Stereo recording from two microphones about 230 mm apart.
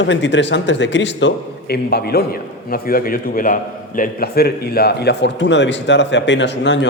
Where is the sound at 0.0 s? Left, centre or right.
Left.